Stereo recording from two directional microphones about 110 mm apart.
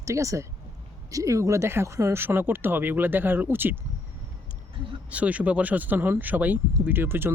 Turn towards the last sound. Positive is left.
turn(degrees=-20)  # may be behind; listen again after turning